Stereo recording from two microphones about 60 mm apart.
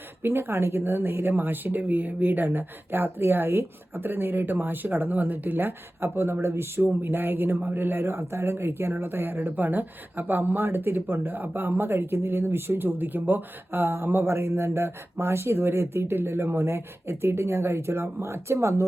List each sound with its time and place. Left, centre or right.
0.2 s a man's voice: right